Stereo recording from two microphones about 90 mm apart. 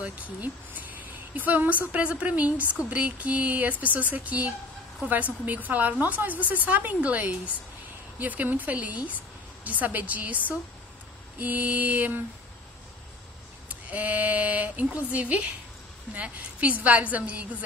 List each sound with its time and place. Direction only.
0.0 s a woman's voice: 20° right (ahead or behind)
11.3 s mantra: 20° right (ahead or behind)
13.7 s speech: 15° right (ahead or behind)